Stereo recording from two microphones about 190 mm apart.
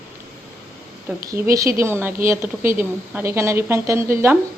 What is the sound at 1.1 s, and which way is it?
A woman's voice, 15° right (ahead or behind).